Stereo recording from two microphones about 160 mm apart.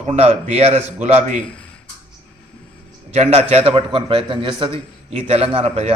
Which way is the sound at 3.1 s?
40° right (ahead or behind).